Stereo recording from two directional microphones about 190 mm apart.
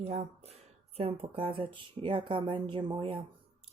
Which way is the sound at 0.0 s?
35° right (ahead or behind).